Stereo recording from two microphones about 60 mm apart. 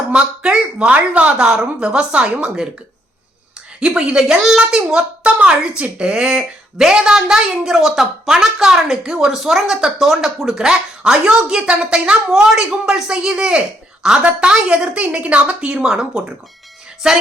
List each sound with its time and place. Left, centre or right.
0.1 s speech: centre
3.8 s speech: centre